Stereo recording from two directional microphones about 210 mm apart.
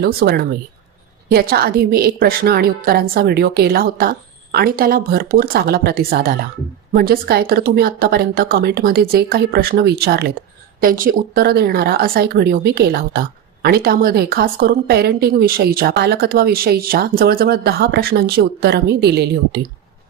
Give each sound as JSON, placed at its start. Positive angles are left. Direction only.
{"t": 0.0, "sound": "a woman's voice", "side_deg": -50}